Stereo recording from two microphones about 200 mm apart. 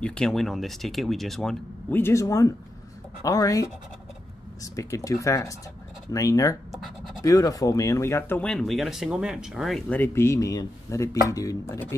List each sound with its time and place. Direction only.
0.0 s speech: 5° left (ahead or behind)
4.7 s speech: 15° left (ahead or behind)